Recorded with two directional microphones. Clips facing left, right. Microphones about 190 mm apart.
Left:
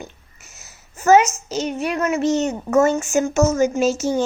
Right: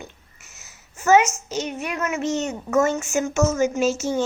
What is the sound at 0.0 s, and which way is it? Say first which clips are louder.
A woman's voice: left 3 dB; 40° left (ahead or behind).